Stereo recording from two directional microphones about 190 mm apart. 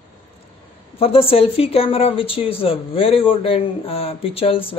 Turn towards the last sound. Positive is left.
turn(degrees=30)  # may be behind; listen again after turning